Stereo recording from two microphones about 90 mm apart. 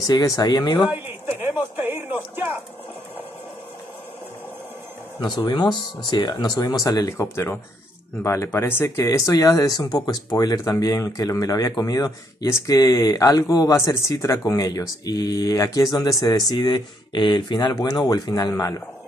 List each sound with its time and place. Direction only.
0.0 s speech: 45° left (ahead or behind)
0.8 s speech: 20° right (ahead or behind)
6.0 s speech: 55° left (ahead or behind)
7.3 s speech: 25° left (ahead or behind); by 13.7 s 45° left (ahead or behind)
13.7 s speech: 35° left (ahead or behind)